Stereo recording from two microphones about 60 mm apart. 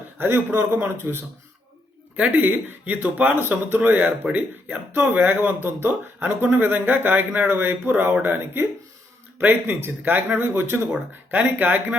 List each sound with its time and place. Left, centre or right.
0.2 s speech: right
2.1 s speech: right
6.2 s speech: right